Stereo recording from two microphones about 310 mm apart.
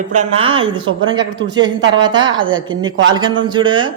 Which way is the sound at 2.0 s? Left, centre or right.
Centre.